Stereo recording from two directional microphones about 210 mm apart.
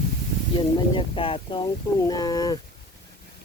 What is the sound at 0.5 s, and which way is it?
Speech, 25° left (ahead or behind).